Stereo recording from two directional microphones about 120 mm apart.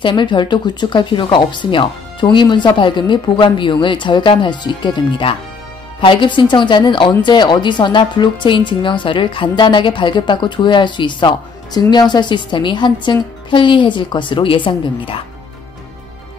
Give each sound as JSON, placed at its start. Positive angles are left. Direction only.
{"t": 0.0, "sound": "speech", "side_deg": 40}